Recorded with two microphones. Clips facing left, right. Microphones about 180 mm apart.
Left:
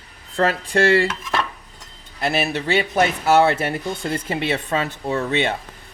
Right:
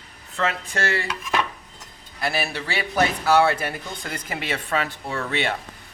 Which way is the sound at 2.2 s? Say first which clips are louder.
Left 4 dB; 20° left (ahead or behind).